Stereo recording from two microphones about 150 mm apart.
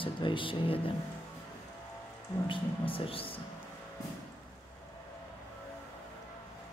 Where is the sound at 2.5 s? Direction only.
35° left (ahead or behind).